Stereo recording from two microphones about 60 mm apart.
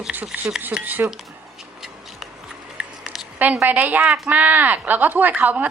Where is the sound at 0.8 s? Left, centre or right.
Right.